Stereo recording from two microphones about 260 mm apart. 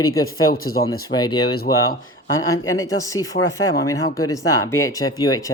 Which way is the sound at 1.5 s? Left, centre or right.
Left.